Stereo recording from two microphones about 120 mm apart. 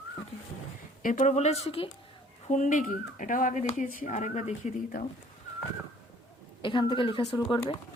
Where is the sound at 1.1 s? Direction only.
75° left (ahead or behind); by 1.9 s 55° left (ahead or behind).